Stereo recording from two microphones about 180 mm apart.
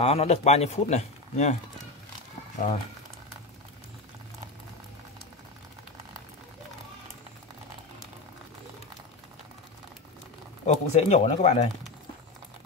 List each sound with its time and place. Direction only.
0.0 s speech: 35° left (ahead or behind)
10.6 s speech: 35° left (ahead or behind)